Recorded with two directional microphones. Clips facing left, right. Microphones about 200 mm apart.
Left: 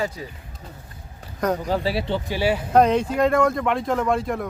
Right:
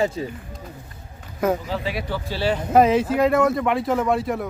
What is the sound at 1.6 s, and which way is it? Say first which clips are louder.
Speech: left 4 dB; 40° left (ahead or behind).